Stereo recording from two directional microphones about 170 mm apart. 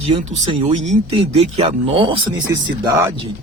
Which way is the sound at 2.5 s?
20° right (ahead or behind).